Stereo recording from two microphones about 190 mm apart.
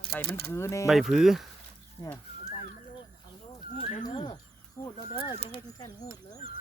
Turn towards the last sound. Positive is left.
turn(degrees=35)  # may be behind; listen again after turning